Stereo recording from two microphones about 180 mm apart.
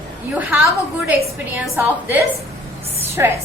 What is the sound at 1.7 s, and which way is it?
Speech, 15° right (ahead or behind).